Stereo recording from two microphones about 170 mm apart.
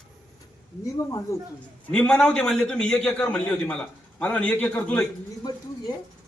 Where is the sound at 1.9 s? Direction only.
5° left (ahead or behind).